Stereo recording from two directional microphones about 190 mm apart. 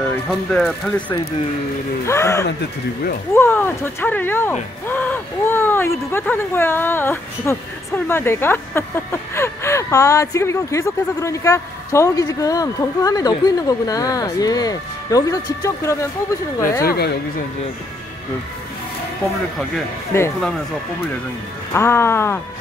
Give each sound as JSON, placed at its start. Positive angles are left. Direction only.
{"t": 0.0, "sound": "speech", "side_deg": 5}
{"t": 2.4, "sound": "speech", "side_deg": 55}
{"t": 3.3, "sound": "speech", "side_deg": 10}
{"t": 16.8, "sound": "speech", "side_deg": 60}
{"t": 20.1, "sound": "speech", "side_deg": 15}
{"t": 21.7, "sound": "speech", "side_deg": 15}